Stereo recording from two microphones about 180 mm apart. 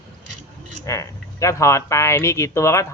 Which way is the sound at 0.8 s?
20° left (ahead or behind).